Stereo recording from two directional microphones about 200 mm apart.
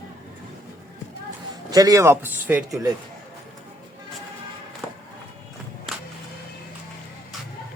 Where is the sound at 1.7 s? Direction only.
20° right (ahead or behind).